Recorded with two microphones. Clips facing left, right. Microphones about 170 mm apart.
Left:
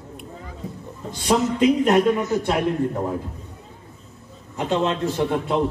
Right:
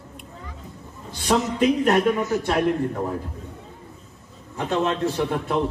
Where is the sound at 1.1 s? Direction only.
20° left (ahead or behind).